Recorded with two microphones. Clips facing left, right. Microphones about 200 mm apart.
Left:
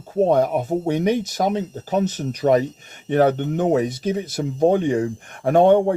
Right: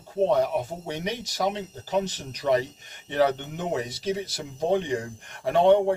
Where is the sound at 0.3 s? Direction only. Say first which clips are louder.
Left 6 dB; 50° left (ahead or behind).